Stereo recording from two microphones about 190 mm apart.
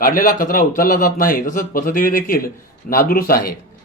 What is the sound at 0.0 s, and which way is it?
A man's voice, 45° left (ahead or behind).